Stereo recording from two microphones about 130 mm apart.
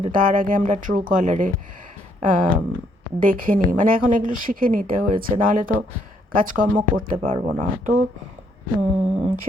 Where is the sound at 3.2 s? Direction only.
90° right.